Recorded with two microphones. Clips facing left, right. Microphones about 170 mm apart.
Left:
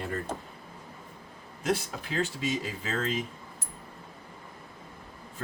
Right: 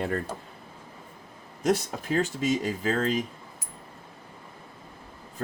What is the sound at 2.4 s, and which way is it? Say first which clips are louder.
Speech: right 5 dB; 45° right (ahead or behind).